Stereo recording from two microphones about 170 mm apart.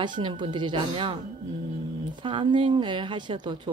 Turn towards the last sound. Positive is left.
turn(degrees=-30)  # may be behind; listen again after turning